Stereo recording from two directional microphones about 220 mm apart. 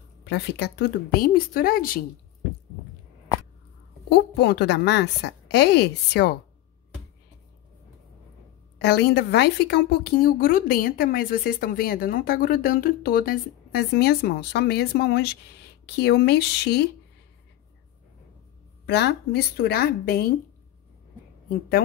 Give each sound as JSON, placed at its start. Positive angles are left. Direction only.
{"t": 0.2, "sound": "a woman's voice", "side_deg": 50}
{"t": 4.1, "sound": "a woman's voice", "side_deg": 50}
{"t": 8.7, "sound": "a woman's voice", "side_deg": 50}
{"t": 18.9, "sound": "a woman's voice", "side_deg": 50}
{"t": 21.5, "sound": "a woman's voice", "side_deg": 45}